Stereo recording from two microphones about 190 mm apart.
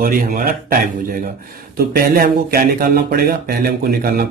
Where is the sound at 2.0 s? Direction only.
50° right (ahead or behind).